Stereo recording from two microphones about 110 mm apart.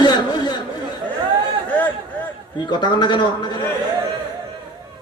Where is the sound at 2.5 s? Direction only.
40° left (ahead or behind).